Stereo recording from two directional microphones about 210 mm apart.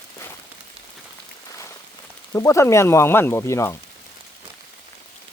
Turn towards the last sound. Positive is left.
turn(degrees=15)  # may be behind; listen again after turning